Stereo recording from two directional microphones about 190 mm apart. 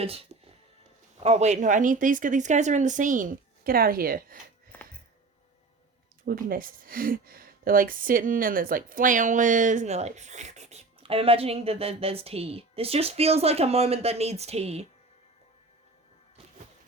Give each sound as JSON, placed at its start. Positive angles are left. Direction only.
{"t": 0.0, "sound": "speech", "side_deg": -30}
{"t": 6.2, "sound": "speech", "side_deg": -50}